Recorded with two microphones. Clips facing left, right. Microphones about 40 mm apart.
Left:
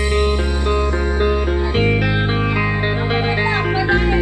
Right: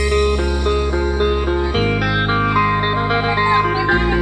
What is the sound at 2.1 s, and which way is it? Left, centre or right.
Music, right.